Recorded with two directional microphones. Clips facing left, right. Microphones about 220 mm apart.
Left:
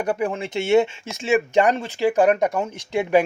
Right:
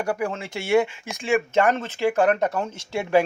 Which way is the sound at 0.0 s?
20° left (ahead or behind).